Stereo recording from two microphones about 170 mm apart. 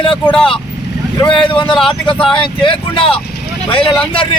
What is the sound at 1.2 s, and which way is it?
Speech, 30° left (ahead or behind).